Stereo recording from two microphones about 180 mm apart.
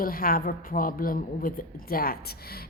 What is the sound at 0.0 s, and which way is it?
A woman's voice, 55° left (ahead or behind).